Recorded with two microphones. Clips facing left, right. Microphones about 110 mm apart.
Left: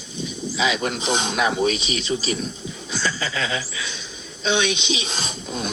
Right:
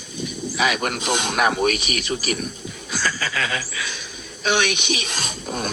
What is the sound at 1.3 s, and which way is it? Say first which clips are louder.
Speech: right 4 dB; 60° right (ahead or behind).